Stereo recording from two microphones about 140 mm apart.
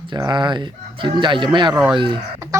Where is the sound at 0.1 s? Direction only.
35° right (ahead or behind).